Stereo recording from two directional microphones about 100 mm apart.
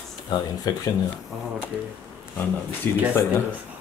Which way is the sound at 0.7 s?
40° left (ahead or behind).